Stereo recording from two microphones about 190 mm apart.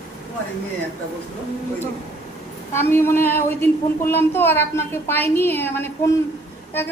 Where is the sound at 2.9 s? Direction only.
15° left (ahead or behind).